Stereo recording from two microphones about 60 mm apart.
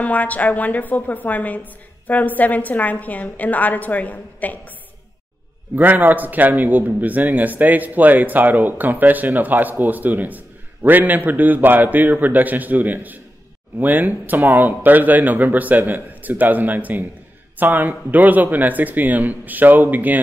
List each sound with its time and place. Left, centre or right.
0.0 s a woman's voice: left
5.8 s speech: right